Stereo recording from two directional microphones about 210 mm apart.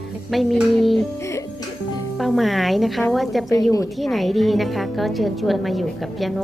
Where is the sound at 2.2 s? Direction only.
Centre (ahead or behind).